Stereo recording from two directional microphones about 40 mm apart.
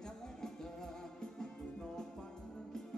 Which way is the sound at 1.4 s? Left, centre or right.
Centre.